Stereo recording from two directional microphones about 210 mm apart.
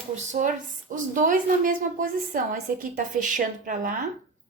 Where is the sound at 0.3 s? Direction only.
35° right (ahead or behind).